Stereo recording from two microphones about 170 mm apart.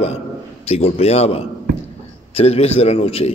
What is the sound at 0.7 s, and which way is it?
A man's voice, 35° left (ahead or behind).